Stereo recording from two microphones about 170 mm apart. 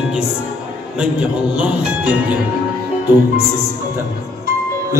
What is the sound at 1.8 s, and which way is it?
Speech, 10° right (ahead or behind).